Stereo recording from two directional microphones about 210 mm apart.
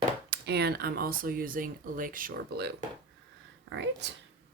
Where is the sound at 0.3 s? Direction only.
50° right (ahead or behind).